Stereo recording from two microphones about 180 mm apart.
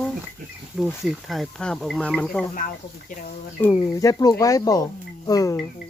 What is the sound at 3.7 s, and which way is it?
Speech, 20° left (ahead or behind).